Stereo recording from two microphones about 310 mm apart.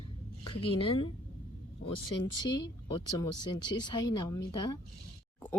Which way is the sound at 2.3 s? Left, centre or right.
Centre.